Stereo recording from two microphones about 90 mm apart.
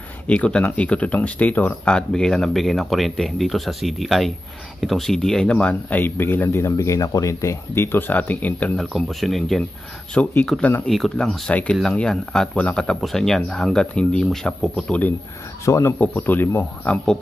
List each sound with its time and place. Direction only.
0.3 s speech: 10° left (ahead or behind)
6.6 s speech: 35° left (ahead or behind); by 8.7 s 15° left (ahead or behind)
8.9 s speech: centre (ahead or behind)
10.1 s speech: 10° left (ahead or behind)
10.9 s speech: centre (ahead or behind)
15.6 s speech: 35° left (ahead or behind)
16.0 s speech: 20° left (ahead or behind)